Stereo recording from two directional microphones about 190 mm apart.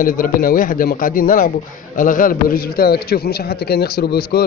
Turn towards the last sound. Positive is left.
turn(degrees=55)  # may be behind; listen again after turning